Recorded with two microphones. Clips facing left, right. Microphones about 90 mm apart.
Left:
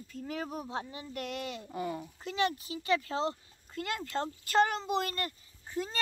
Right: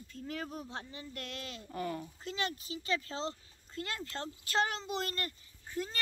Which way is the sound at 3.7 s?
15° left (ahead or behind).